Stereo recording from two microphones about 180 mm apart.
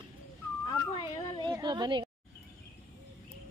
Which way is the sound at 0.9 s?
35° left (ahead or behind).